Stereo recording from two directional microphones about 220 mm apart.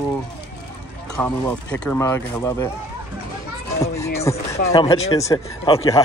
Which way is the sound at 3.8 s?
15° left (ahead or behind).